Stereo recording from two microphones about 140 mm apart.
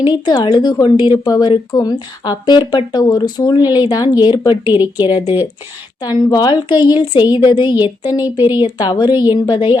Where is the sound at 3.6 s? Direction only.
15° right (ahead or behind).